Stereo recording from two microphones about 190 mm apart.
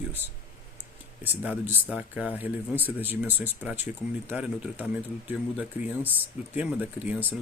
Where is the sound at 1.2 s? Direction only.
10° right (ahead or behind).